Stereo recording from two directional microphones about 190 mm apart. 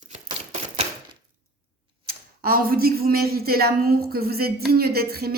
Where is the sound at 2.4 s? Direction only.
50° right (ahead or behind).